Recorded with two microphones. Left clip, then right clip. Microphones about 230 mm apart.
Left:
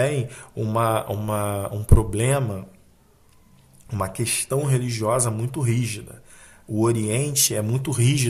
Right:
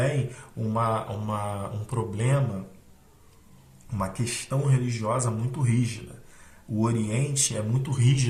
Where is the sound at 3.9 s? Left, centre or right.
Left.